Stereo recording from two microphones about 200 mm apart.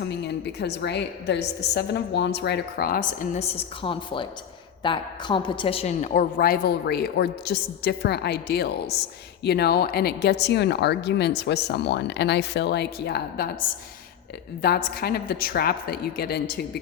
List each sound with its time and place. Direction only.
0.1 s a woman's voice: 55° left (ahead or behind)
14.6 s a woman's voice: 50° left (ahead or behind)